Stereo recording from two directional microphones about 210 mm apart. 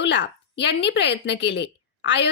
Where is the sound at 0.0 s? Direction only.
55° left (ahead or behind).